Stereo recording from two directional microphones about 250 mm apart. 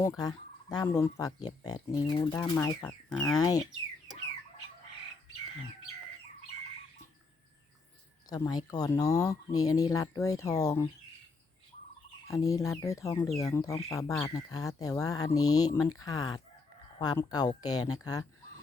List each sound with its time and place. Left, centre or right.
0.0 s speech: centre
8.3 s speech: centre
12.4 s speech: centre